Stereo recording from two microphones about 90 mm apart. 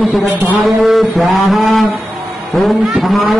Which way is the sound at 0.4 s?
20° right (ahead or behind).